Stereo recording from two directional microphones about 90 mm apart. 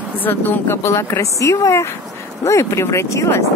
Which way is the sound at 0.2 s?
20° left (ahead or behind).